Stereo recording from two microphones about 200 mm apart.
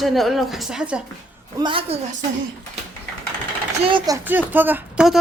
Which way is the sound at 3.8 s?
25° right (ahead or behind).